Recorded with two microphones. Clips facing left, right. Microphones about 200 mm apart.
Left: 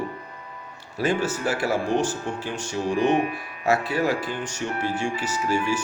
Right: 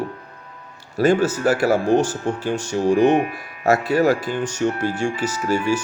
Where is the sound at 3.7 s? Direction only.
40° right (ahead or behind).